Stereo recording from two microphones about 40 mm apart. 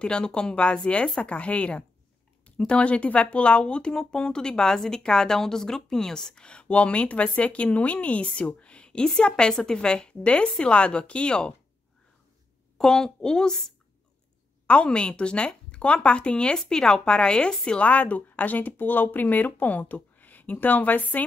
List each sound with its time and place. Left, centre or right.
0.0 s speech: left
6.4 s speech: left
12.7 s a woman's voice: centre
14.7 s speech: left
16.5 s speech: centre
17.8 s speech: left